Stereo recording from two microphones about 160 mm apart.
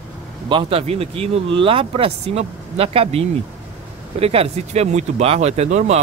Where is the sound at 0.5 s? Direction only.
35° right (ahead or behind).